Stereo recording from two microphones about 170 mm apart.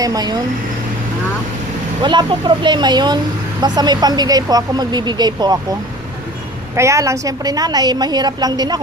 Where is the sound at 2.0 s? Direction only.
25° right (ahead or behind).